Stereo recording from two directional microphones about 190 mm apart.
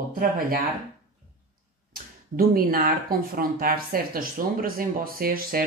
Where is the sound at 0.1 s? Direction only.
50° right (ahead or behind).